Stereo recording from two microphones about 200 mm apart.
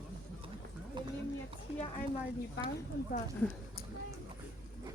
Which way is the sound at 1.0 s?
25° right (ahead or behind).